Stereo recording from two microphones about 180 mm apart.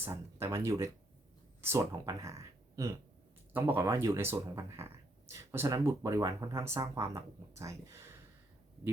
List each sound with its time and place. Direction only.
0.0 s speech: 15° right (ahead or behind)